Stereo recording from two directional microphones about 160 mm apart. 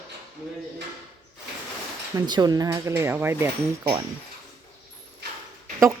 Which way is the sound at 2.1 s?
25° right (ahead or behind).